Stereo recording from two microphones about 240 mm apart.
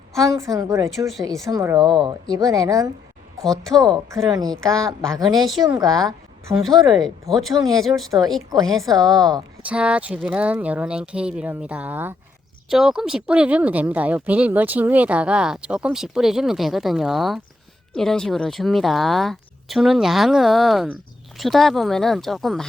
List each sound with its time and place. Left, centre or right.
0.3 s speech: centre
0.9 s speech: centre
1.5 s speech: centre
3.4 s speech: centre
3.9 s speech: centre
5.4 s speech: centre
5.6 s speech: centre
6.7 s speech: centre